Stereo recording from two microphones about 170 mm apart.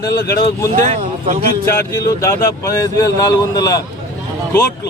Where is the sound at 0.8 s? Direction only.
40° right (ahead or behind).